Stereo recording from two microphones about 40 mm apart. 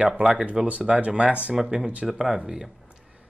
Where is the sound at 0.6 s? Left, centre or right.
Centre.